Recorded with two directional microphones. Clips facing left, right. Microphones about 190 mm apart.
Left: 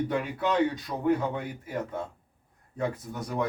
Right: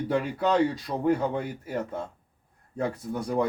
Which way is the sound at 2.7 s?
30° right (ahead or behind).